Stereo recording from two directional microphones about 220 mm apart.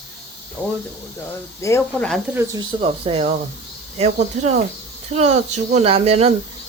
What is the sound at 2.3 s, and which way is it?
Speech, 15° right (ahead or behind).